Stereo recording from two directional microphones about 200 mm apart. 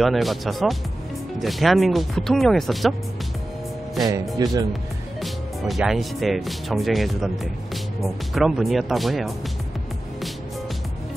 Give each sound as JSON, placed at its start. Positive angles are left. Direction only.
{"t": 0.0, "sound": "speech", "side_deg": 0}
{"t": 4.4, "sound": "speech", "side_deg": -20}
{"t": 5.2, "sound": "speech", "side_deg": 0}